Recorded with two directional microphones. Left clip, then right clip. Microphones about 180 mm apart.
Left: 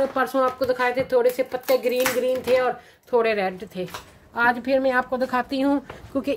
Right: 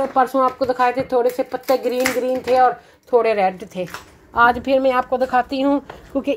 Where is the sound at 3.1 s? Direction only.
5° right (ahead or behind).